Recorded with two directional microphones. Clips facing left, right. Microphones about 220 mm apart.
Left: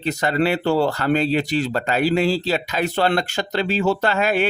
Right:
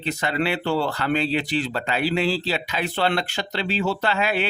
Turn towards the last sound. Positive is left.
turn(degrees=45)  # may be behind; listen again after turning